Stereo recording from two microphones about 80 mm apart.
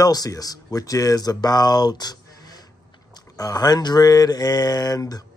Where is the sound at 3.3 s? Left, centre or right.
Left.